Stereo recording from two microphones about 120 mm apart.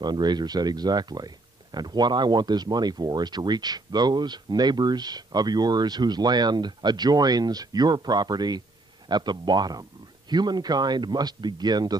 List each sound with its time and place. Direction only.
0.0 s speech: 35° right (ahead or behind)